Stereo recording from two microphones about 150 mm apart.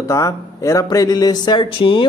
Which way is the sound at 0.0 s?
20° left (ahead or behind).